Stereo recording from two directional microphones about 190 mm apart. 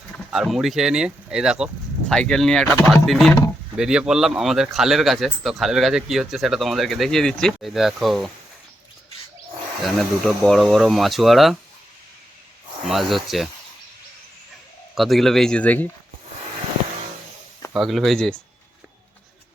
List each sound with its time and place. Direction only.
0.3 s speech: centre (ahead or behind)
9.8 s speech: centre (ahead or behind)
12.9 s speech: centre (ahead or behind)
14.9 s speech: centre (ahead or behind)
17.7 s speech: centre (ahead or behind)